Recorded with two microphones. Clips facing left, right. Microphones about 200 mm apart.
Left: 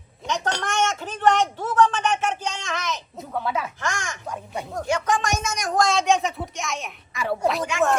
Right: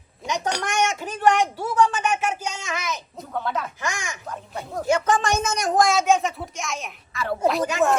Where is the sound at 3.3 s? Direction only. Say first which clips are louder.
Left 1 dB; 5° left (ahead or behind).